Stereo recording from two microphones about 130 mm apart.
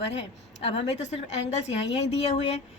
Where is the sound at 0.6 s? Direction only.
50° left (ahead or behind).